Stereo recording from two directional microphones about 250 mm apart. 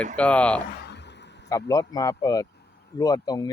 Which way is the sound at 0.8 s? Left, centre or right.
Left.